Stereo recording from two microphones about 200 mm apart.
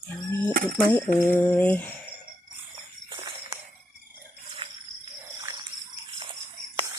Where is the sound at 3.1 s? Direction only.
20° right (ahead or behind).